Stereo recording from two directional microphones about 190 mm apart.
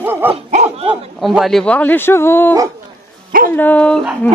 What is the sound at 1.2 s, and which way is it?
A woman's voice, centre (ahead or behind).